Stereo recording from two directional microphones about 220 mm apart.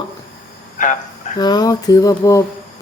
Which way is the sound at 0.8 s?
35° left (ahead or behind).